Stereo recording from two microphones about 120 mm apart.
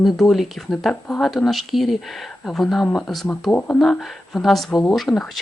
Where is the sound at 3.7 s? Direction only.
Centre (ahead or behind).